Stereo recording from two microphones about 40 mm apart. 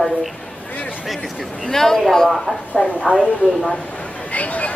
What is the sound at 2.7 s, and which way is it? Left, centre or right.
Speech, left.